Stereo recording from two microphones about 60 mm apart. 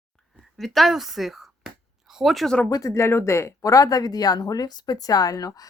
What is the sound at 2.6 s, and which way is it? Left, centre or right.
Speech, left.